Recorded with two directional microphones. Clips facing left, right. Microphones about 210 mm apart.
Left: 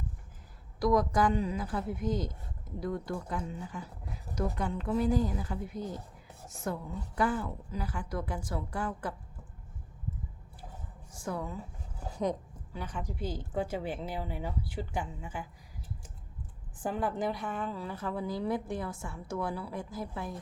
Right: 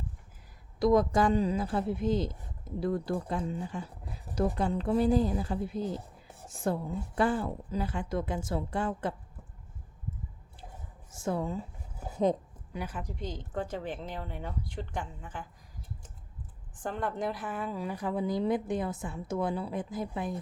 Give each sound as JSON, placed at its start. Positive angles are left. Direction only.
{"t": 0.8, "sound": "a woman's voice", "side_deg": -25}
{"t": 11.1, "sound": "speech", "side_deg": -25}
{"t": 12.7, "sound": "a woman's voice", "side_deg": -10}
{"t": 16.8, "sound": "a woman's voice", "side_deg": 5}